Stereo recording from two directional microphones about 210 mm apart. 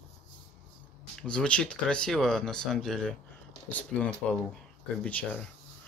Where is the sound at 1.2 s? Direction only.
5° left (ahead or behind).